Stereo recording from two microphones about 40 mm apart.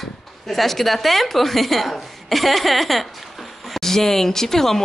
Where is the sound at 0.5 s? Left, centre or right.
Centre.